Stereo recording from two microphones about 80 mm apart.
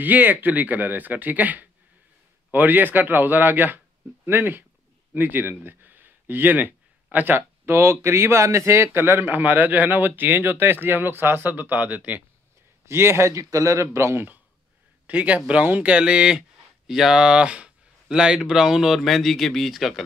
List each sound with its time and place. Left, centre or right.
0.0 s speech: right
12.8 s a man's voice: right; by 20.0 s centre